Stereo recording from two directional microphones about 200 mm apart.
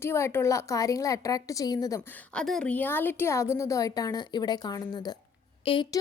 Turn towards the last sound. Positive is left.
turn(degrees=25)  # may be behind; listen again after turning